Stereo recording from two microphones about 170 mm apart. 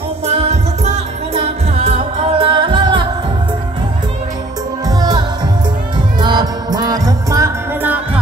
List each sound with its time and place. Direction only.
0.3 s music: 40° right (ahead or behind)
4.8 s music: 25° right (ahead or behind)
6.2 s music: 25° right (ahead or behind)